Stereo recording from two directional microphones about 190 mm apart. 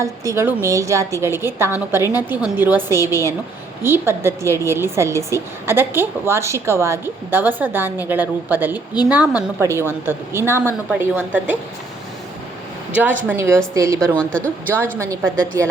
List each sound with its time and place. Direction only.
0.0 s a woman's voice: 15° right (ahead or behind)
12.9 s a woman's voice: 10° right (ahead or behind)
14.2 s speech: 5° left (ahead or behind)